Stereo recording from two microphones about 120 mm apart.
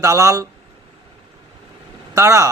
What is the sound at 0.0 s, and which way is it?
Speech, 30° right (ahead or behind).